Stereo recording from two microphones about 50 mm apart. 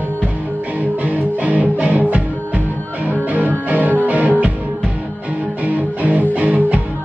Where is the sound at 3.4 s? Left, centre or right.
Right.